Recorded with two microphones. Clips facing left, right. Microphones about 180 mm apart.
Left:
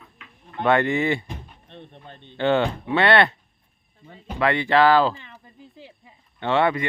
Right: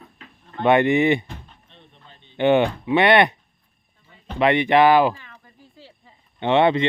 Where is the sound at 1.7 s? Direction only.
60° left (ahead or behind).